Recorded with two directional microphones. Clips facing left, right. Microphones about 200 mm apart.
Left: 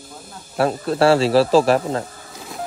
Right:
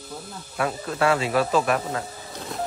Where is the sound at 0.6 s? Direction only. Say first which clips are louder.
Left 7 dB; 35° left (ahead or behind).